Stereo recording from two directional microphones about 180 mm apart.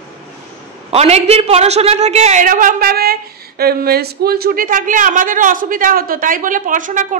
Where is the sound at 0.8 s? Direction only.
35° right (ahead or behind).